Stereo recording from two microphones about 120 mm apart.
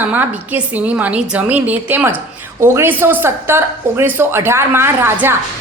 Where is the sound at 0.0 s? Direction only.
15° right (ahead or behind).